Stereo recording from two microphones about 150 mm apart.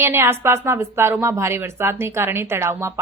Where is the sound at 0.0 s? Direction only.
15° right (ahead or behind).